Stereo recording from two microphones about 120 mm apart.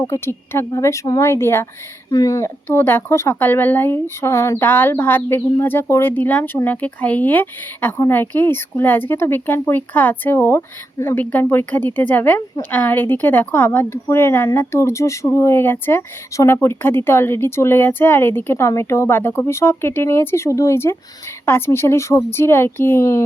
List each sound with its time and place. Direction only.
0.0 s a woman's voice: 20° left (ahead or behind)